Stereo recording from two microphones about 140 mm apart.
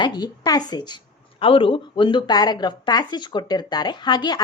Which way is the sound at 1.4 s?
40° left (ahead or behind).